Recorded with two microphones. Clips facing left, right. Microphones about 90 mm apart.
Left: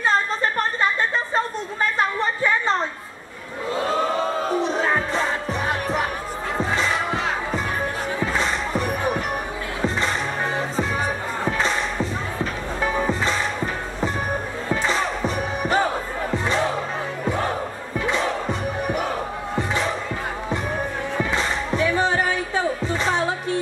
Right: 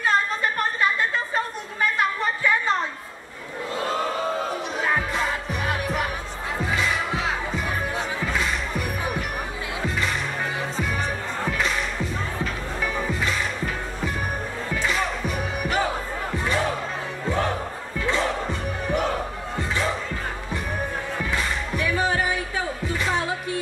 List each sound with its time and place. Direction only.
4.8 s music: 30° left (ahead or behind)
6.9 s music: centre (ahead or behind)
8.3 s music: 30° left (ahead or behind)
11.5 s music: 30° left (ahead or behind)
14.7 s music: 25° left (ahead or behind)
17.9 s crowd: 20° left (ahead or behind)
21.2 s music: 20° left (ahead or behind)